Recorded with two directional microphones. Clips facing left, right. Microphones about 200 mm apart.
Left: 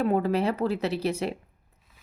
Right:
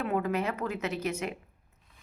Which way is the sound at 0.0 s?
35° left (ahead or behind).